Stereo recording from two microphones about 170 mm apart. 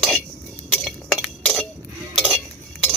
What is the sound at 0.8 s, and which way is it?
Chink, centre (ahead or behind).